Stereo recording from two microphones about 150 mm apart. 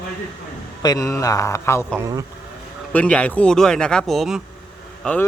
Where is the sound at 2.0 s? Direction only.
25° right (ahead or behind).